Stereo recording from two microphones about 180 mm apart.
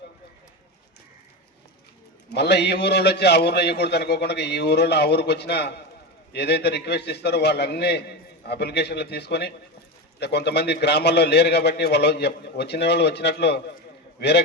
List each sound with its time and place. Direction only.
2.3 s a man's voice: 65° left (ahead or behind)